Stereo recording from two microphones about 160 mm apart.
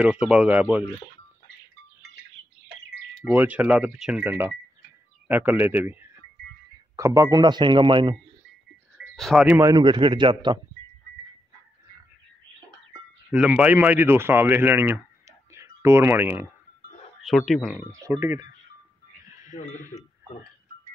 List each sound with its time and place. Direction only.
0.0 s speech: 5° right (ahead or behind)
3.3 s a man's voice: 10° right (ahead or behind); by 8.2 s 30° right (ahead or behind)
8.9 s a sound: centre (ahead or behind)
9.5 s speech: 20° right (ahead or behind)
13.3 s speech: 10° right (ahead or behind)
17.2 s speech: centre (ahead or behind)
18.0 s speech: 15° right (ahead or behind)
19.4 s speech: 50° left (ahead or behind)
19.8 s speech: 20° right (ahead or behind)